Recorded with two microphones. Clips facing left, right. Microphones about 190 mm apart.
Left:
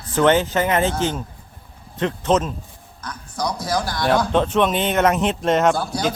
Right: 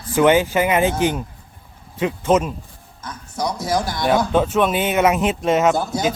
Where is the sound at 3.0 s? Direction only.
25° right (ahead or behind).